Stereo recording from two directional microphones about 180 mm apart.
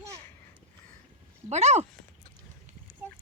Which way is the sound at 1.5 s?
40° right (ahead or behind).